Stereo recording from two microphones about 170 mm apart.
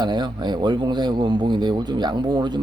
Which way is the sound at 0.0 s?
25° right (ahead or behind).